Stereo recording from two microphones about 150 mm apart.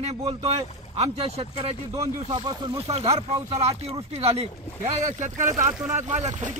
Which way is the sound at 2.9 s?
45° right (ahead or behind).